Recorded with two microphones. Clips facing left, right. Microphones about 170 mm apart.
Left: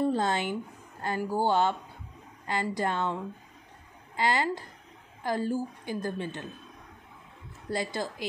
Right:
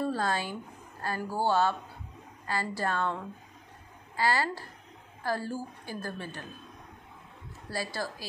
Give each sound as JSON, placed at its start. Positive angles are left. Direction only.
{"t": 0.0, "sound": "a woman's voice", "side_deg": 20}
{"t": 4.2, "sound": "a woman's voice", "side_deg": 20}
{"t": 7.7, "sound": "a woman's voice", "side_deg": 20}